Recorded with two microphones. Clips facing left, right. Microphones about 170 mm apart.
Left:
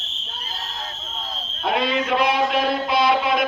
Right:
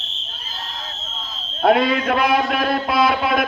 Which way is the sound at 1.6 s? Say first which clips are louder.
Right 6 dB; 55° right (ahead or behind).